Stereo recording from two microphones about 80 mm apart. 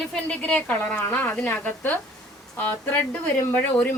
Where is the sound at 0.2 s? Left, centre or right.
Centre.